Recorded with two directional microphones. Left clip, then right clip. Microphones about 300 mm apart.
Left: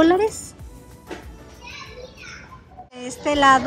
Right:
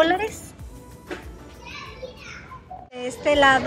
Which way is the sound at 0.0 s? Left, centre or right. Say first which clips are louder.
Left 3 dB; centre.